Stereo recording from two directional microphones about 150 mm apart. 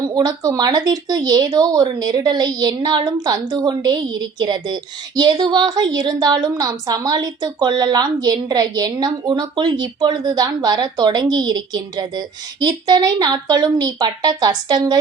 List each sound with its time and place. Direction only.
0.0 s speech: 25° right (ahead or behind)